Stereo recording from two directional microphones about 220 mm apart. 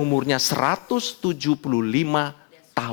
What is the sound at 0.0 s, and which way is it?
Speech, 15° left (ahead or behind).